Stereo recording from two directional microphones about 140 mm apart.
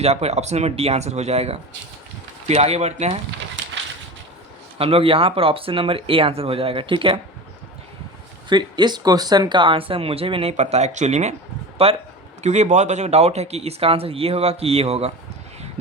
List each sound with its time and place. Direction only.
0.0 s speech: 50° right (ahead or behind)
4.8 s speech: 40° right (ahead or behind)
8.4 s speech: 30° right (ahead or behind)